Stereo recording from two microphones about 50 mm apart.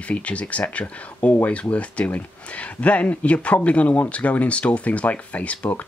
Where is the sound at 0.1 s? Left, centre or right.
Left.